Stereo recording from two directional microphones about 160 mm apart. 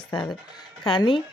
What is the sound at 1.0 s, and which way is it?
Speech, 30° left (ahead or behind).